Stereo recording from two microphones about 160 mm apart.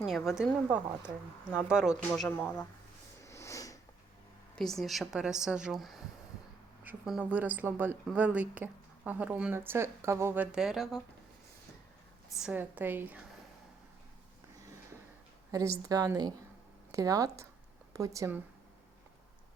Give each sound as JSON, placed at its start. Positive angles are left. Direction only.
{"t": 0.0, "sound": "a woman's voice", "side_deg": 0}
{"t": 2.4, "sound": "speech", "side_deg": 10}
{"t": 3.2, "sound": "sniff", "side_deg": 20}
{"t": 4.5, "sound": "a woman's voice", "side_deg": 5}
{"t": 12.4, "sound": "speech", "side_deg": -10}
{"t": 15.5, "sound": "a woman's voice", "side_deg": -20}